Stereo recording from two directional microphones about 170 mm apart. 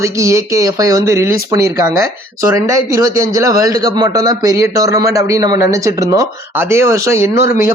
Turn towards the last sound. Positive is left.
turn(degrees=-15)  # may be behind; listen again after turning